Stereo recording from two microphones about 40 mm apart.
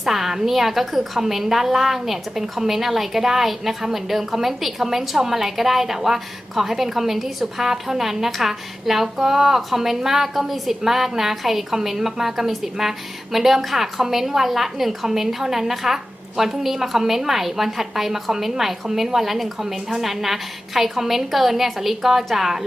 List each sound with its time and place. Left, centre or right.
0.0 s a woman's voice: centre